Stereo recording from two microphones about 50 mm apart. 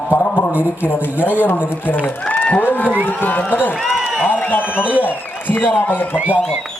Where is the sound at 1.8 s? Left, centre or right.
Left.